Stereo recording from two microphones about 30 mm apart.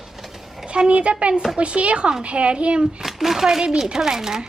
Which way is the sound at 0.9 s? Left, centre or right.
Right.